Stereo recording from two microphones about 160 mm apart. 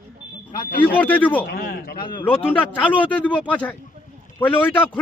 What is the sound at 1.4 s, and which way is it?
Speech, 70° left (ahead or behind).